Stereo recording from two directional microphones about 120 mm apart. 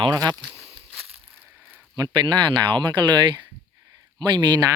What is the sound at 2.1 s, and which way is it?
Speech, 40° right (ahead or behind).